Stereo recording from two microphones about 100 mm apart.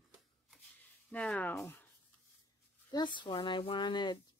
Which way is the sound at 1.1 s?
15° left (ahead or behind).